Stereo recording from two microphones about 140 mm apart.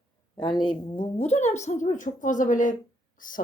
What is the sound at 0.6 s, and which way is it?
Speech, 35° left (ahead or behind).